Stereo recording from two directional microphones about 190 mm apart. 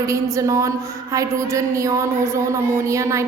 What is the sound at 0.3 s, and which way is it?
A woman's voice, 15° right (ahead or behind).